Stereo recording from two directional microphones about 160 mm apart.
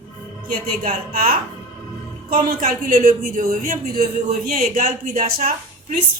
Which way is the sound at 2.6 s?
60° right (ahead or behind).